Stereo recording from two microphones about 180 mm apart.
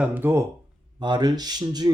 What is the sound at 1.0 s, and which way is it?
Speech, 25° right (ahead or behind).